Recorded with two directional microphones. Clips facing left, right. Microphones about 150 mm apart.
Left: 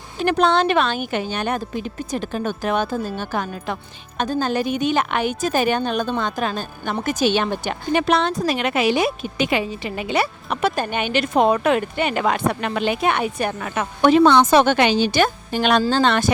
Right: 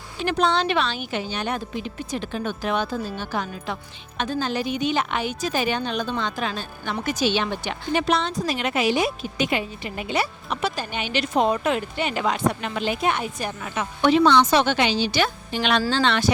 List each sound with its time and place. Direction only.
0.2 s a woman's voice: 55° left (ahead or behind)